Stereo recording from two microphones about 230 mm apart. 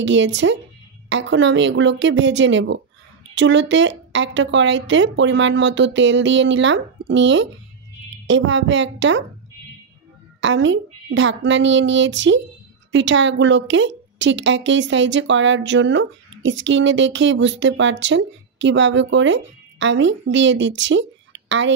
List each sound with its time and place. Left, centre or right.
0.0 s a woman's voice: right
10.4 s a woman's voice: right